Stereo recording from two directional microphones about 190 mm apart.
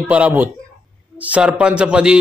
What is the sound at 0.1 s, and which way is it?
A man's voice, 10° right (ahead or behind).